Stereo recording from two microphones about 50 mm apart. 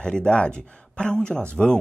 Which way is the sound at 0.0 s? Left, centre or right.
Centre.